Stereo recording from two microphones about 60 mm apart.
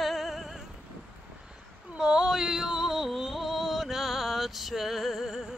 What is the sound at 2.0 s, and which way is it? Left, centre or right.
Music, centre.